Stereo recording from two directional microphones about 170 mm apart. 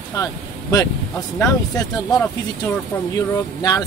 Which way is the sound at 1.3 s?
20° left (ahead or behind).